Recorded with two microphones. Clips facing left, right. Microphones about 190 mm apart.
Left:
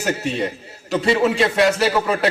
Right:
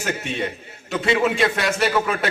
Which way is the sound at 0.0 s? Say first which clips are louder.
Left 4 dB; 35° left (ahead or behind).